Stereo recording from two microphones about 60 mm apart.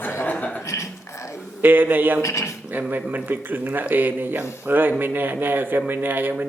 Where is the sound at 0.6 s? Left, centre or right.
Left.